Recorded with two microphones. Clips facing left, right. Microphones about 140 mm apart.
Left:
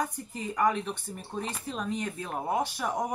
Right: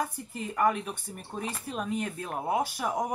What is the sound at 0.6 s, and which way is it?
Speech, 5° right (ahead or behind).